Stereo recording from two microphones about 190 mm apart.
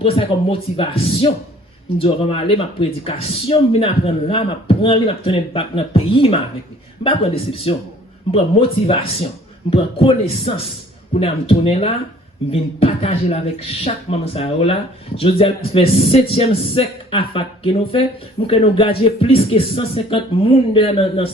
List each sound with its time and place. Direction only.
0.0 s speech: 30° left (ahead or behind)